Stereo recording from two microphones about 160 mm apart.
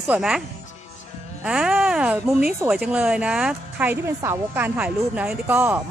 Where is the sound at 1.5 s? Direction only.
5° right (ahead or behind).